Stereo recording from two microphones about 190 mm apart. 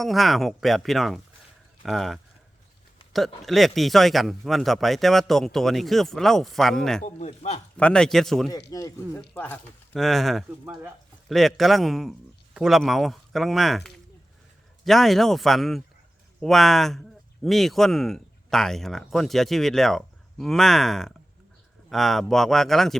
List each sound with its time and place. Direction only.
0.0 s speech: centre (ahead or behind)
7.0 s speech: 35° left (ahead or behind)
7.8 s speech: 5° left (ahead or behind)
8.7 s speech: 20° left (ahead or behind); by 23.0 s centre (ahead or behind)